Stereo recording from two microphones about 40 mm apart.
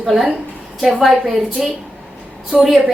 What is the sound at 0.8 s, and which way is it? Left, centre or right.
A woman's voice, centre.